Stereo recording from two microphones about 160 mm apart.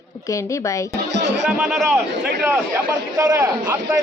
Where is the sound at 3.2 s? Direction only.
20° right (ahead or behind).